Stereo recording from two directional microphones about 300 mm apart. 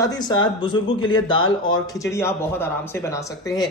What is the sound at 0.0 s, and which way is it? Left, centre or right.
Speech, centre.